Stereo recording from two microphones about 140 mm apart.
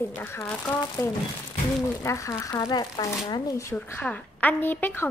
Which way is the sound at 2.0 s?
20° left (ahead or behind).